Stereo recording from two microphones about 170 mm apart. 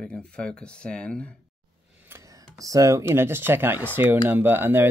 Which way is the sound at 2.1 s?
20° right (ahead or behind).